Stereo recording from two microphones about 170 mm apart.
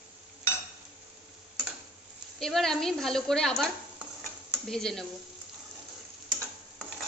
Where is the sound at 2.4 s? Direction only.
Centre (ahead or behind).